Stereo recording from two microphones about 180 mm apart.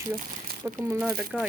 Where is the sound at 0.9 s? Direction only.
5° right (ahead or behind).